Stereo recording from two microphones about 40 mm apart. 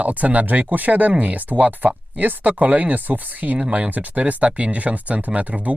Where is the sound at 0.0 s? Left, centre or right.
Right.